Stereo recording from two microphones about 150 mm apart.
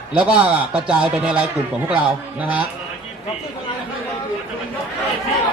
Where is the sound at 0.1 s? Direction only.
10° right (ahead or behind).